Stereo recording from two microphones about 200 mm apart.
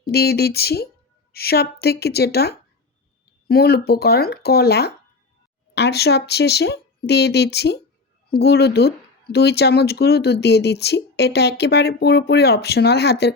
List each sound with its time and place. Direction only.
0.0 s speech: 50° left (ahead or behind)